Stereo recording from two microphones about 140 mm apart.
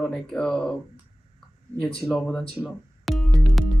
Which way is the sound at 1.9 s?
5° left (ahead or behind).